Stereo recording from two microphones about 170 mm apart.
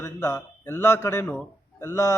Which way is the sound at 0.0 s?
15° left (ahead or behind).